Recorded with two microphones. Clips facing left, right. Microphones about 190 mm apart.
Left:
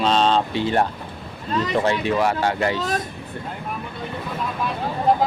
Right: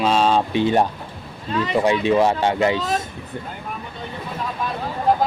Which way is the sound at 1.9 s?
20° right (ahead or behind).